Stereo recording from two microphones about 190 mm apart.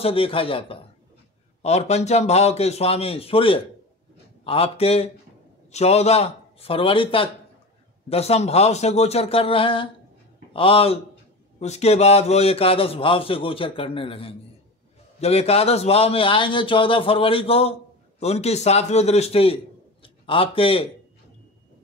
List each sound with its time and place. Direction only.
0.0 s a man's voice: 30° left (ahead or behind)